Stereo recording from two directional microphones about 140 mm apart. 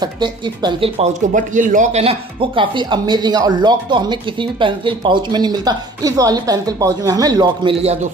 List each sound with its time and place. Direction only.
0.0 s speech: 30° right (ahead or behind)
1.3 s speech: 65° right (ahead or behind); by 7.7 s 30° right (ahead or behind)
7.8 s a man's voice: 50° right (ahead or behind)